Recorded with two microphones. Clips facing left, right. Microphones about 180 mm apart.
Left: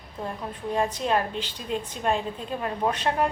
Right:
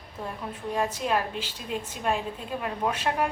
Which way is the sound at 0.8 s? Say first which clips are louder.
Left 2 dB; 5° right (ahead or behind).